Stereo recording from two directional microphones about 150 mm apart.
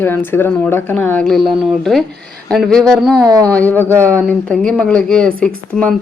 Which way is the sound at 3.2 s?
25° right (ahead or behind).